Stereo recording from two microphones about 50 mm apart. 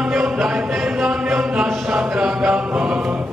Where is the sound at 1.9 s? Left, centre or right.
Centre.